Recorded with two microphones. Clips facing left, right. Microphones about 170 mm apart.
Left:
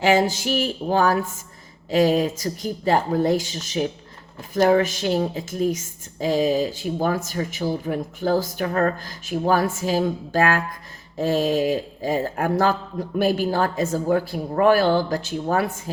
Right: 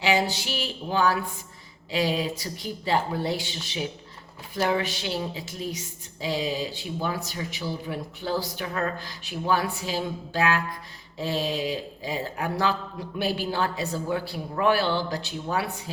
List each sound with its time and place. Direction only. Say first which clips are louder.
0.0 s a woman's voice: left 6 dB; 45° left (ahead or behind)